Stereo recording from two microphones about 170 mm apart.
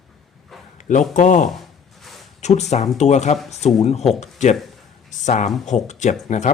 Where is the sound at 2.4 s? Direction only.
40° left (ahead or behind).